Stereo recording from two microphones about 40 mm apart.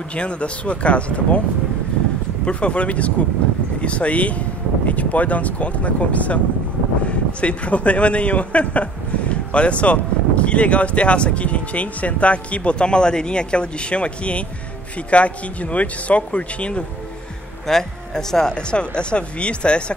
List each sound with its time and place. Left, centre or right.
0.1 s speech: left
2.4 s speech: left
17.6 s speech: centre; by 19.8 s left